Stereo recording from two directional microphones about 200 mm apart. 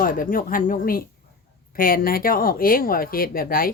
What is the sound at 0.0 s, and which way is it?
Speech, 45° left (ahead or behind).